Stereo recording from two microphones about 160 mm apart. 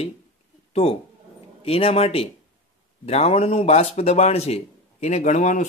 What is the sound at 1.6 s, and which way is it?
A man's voice, 40° left (ahead or behind).